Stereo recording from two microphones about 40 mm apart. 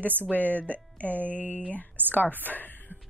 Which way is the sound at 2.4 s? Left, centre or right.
Left.